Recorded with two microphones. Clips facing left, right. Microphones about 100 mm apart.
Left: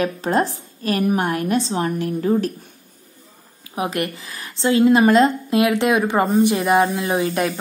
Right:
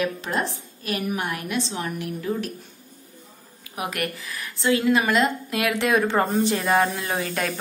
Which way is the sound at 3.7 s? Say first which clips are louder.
Left 5 dB; 25° left (ahead or behind).